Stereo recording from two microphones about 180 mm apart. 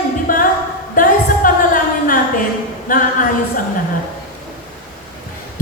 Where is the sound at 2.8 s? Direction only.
50° left (ahead or behind).